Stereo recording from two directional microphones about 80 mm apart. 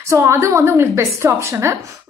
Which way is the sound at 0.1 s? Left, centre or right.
Right.